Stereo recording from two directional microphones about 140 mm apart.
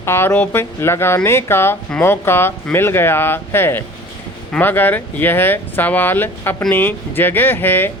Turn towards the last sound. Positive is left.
turn(degrees=15)  # may be behind; listen again after turning